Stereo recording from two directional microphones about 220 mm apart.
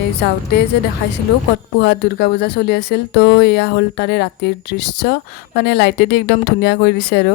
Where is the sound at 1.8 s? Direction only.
50° left (ahead or behind).